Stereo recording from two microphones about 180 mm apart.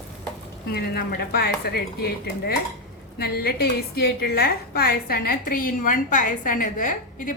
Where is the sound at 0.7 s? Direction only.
60° left (ahead or behind).